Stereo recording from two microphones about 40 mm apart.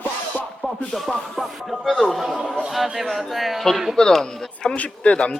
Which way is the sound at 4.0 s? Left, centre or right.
Centre.